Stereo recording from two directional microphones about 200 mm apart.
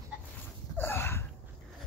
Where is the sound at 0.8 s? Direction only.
10° left (ahead or behind).